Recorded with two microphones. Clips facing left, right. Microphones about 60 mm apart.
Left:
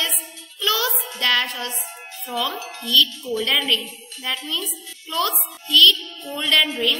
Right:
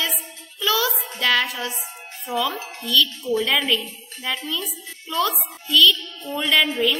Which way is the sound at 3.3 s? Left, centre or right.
Centre.